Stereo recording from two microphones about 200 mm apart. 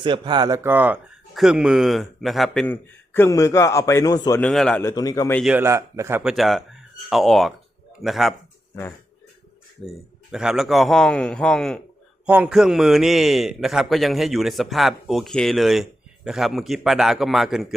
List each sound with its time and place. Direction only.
0.0 s a man's voice: 25° right (ahead or behind); by 2.6 s centre (ahead or behind)
2.6 s a man's voice: 10° left (ahead or behind)
4.4 s a man's voice: 5° left (ahead or behind)
5.4 s a man's voice: 5° right (ahead or behind)
6.3 s a man's voice: centre (ahead or behind)
10.3 s a man's voice: centre (ahead or behind)